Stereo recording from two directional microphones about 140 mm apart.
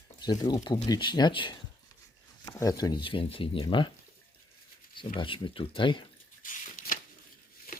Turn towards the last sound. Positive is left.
turn(degrees=90)